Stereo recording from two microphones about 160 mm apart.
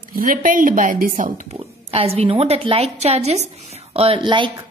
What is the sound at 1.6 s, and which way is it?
A woman's voice, 40° right (ahead or behind).